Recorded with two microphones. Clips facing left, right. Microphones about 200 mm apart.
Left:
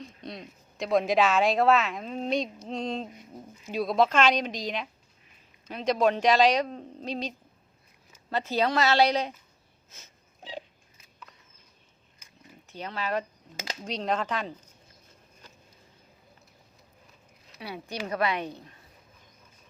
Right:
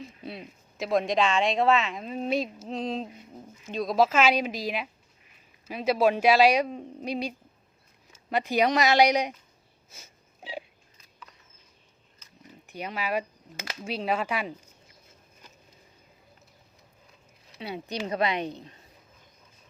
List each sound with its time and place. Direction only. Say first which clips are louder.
0.0 s speech: right 1 dB; 5° right (ahead or behind)
9.9 s wheeze: right 2 dB; 10° right (ahead or behind)
12.6 s speech: right 1 dB; 15° right (ahead or behind)
17.6 s a woman's voice: right 3 dB; 20° right (ahead or behind)